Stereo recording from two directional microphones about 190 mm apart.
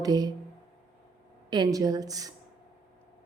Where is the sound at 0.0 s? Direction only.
20° right (ahead or behind).